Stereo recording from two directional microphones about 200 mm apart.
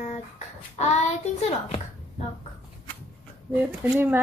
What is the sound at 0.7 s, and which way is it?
Child singing, 35° left (ahead or behind).